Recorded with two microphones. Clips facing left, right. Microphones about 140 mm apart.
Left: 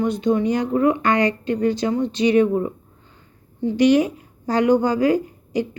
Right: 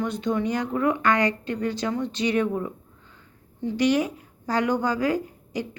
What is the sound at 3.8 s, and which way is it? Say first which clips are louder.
A woman's voice: left 6 dB; 20° left (ahead or behind).